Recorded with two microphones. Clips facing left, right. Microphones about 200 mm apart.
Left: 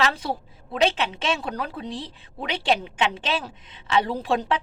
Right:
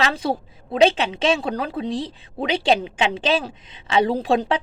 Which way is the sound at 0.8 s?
90° right.